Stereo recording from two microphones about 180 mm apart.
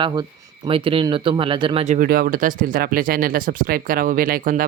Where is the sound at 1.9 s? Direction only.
55° right (ahead or behind).